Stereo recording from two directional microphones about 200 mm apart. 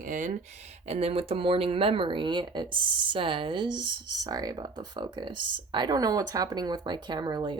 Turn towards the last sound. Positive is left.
turn(degrees=-20)  # may be behind; listen again after turning